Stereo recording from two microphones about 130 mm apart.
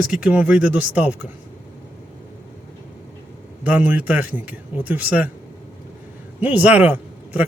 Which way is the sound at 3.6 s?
10° right (ahead or behind).